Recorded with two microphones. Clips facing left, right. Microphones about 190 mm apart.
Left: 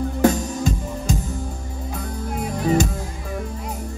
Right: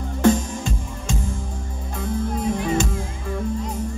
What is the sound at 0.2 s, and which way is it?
Music, 40° left (ahead or behind).